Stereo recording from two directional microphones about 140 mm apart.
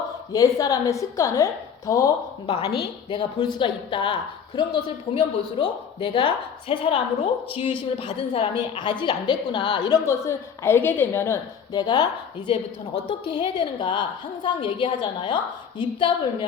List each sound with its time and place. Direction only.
0.3 s a woman's voice: 25° left (ahead or behind)
2.6 s speech: 35° left (ahead or behind)
10.1 s a woman's voice: 20° left (ahead or behind)
11.7 s speech: 30° left (ahead or behind)
13.1 s speech: 40° left (ahead or behind)